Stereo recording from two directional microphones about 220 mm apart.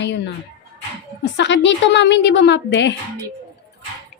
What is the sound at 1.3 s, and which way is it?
A woman's voice, 55° left (ahead or behind).